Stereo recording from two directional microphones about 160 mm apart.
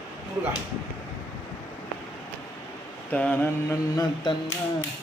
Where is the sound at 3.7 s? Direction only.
20° left (ahead or behind).